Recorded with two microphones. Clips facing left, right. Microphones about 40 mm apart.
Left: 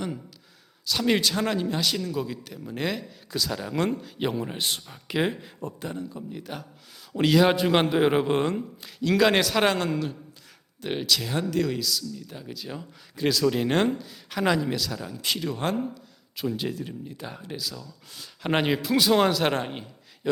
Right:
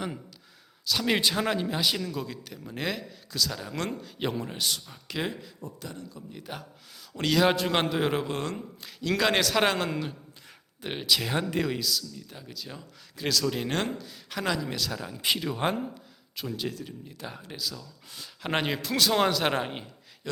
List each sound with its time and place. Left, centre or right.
0.9 s speech: centre
2.1 s speech: centre
3.2 s a man's voice: centre
4.5 s speech: left
4.9 s speech: centre
7.1 s a man's voice: centre
8.5 s speech: centre
11.2 s speech: right; by 14.4 s centre
14.4 s a man's voice: centre
14.7 s speech: centre
16.3 s a man's voice: centre
20.2 s a man's voice: centre